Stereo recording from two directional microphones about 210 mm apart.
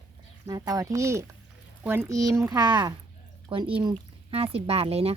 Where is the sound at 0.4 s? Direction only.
20° right (ahead or behind).